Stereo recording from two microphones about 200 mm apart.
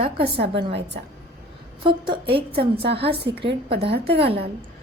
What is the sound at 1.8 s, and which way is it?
Speech, 25° right (ahead or behind).